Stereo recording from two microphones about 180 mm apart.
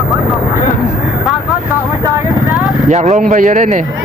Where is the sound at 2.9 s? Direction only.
40° right (ahead or behind).